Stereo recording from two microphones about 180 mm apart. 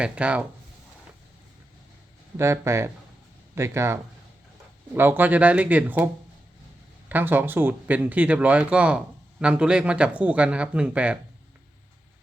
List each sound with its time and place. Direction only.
0.0 s speech: 5° right (ahead or behind)
2.4 s speech: 15° right (ahead or behind)
7.1 s speech: 10° right (ahead or behind)